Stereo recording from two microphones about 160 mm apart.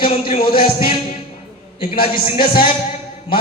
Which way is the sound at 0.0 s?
35° left (ahead or behind).